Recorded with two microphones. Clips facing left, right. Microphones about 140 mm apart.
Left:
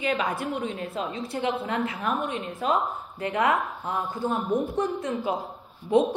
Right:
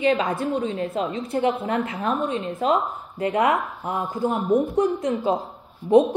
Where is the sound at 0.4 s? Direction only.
25° right (ahead or behind).